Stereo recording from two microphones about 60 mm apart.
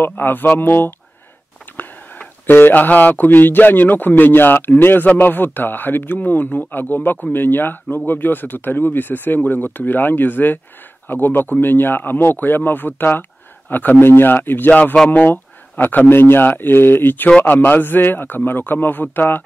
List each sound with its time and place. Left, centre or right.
0.0 s speech: left
17.3 s a man's voice: left